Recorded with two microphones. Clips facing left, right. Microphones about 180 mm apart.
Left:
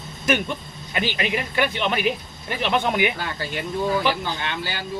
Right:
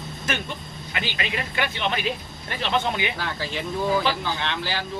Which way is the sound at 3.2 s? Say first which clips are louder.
Even; 5° left (ahead or behind).